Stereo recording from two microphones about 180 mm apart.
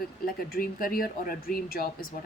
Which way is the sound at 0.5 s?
55° left (ahead or behind).